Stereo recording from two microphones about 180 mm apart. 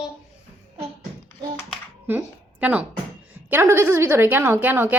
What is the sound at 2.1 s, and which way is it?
A woman's voice, 10° right (ahead or behind).